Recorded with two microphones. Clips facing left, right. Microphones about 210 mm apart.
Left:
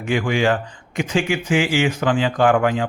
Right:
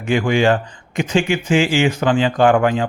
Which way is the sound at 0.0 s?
30° right (ahead or behind).